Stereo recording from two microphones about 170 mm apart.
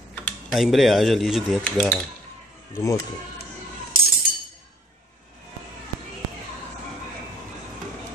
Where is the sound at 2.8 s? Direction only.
20° left (ahead or behind).